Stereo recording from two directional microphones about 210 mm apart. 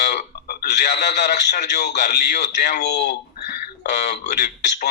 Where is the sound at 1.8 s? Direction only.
50° left (ahead or behind).